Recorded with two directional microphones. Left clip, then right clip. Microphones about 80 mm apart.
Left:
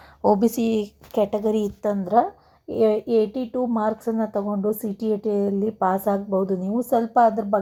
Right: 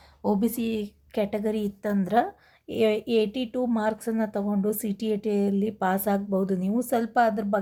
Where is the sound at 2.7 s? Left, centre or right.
Right.